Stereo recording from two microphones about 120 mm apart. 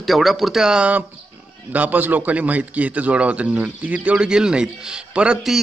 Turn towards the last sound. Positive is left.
turn(degrees=-5)  # may be behind; listen again after turning